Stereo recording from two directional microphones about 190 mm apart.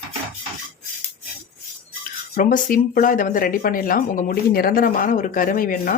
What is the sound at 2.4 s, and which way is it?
Speech, 45° left (ahead or behind).